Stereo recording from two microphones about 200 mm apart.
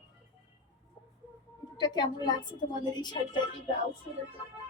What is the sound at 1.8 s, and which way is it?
A woman's voice, 20° left (ahead or behind).